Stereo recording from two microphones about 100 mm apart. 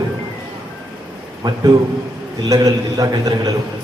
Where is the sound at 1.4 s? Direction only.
40° right (ahead or behind).